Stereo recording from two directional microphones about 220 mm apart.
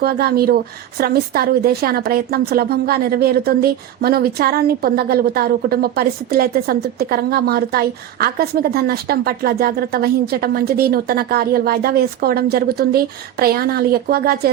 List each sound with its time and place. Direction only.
0.0 s a woman's voice: 45° right (ahead or behind)